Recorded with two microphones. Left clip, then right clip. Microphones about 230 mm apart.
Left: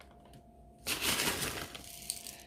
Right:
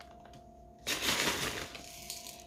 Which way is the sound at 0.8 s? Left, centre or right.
Left.